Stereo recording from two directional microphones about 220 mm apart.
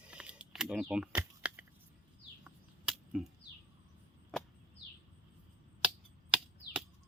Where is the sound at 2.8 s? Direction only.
Centre (ahead or behind).